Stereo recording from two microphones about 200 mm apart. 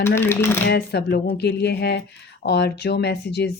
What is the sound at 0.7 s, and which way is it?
Speech, 55° left (ahead or behind).